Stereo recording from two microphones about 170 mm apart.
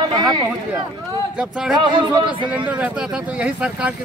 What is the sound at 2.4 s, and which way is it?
Speech, 10° right (ahead or behind).